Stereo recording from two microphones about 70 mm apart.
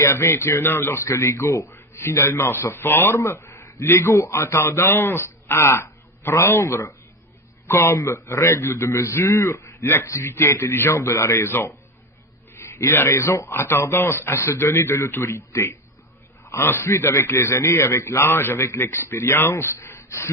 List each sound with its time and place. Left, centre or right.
0.0 s a man's voice: left